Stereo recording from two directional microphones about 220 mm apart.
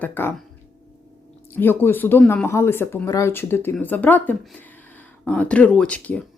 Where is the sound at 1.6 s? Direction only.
10° left (ahead or behind).